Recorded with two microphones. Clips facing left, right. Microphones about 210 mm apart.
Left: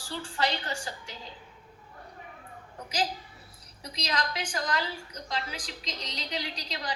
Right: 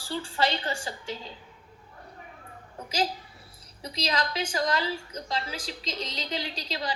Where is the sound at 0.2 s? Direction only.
25° right (ahead or behind).